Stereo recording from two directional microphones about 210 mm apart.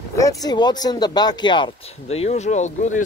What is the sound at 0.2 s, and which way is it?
Speech, 15° left (ahead or behind).